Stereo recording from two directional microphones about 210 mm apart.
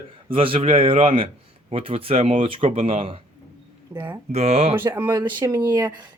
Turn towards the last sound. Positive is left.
turn(degrees=-15)  # may be behind; listen again after turning